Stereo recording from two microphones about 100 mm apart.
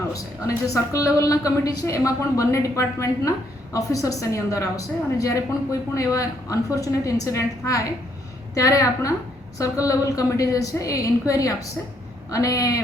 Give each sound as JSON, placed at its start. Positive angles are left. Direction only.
{"t": 0.1, "sound": "a woman's voice", "side_deg": 35}